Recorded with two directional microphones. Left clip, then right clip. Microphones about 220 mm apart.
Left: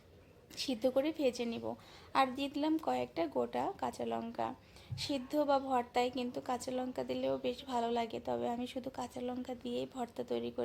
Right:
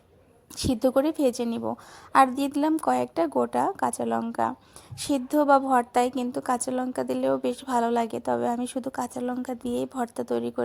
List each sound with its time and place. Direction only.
0.5 s a woman's voice: 30° right (ahead or behind)